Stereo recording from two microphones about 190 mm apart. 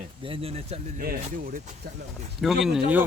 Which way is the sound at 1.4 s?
50° right (ahead or behind).